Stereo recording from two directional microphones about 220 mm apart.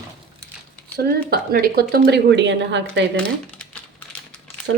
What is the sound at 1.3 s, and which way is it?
A woman's voice, 45° right (ahead or behind).